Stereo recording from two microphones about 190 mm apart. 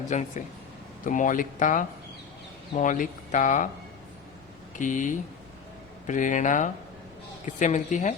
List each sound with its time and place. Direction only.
0.1 s a woman's voice: 40° left (ahead or behind)
4.8 s a woman's voice: 40° left (ahead or behind)